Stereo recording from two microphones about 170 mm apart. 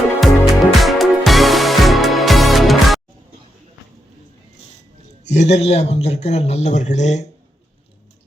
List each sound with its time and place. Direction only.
0.2 s music: centre (ahead or behind)
5.2 s speech: 40° left (ahead or behind)